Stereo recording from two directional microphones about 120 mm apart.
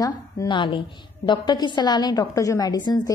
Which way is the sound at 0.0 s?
40° left (ahead or behind).